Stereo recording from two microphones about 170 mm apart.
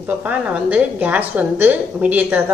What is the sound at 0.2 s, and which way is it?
A woman's voice, 10° right (ahead or behind).